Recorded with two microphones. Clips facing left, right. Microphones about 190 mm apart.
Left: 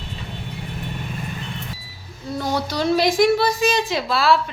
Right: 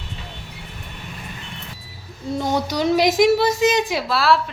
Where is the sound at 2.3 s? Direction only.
20° right (ahead or behind).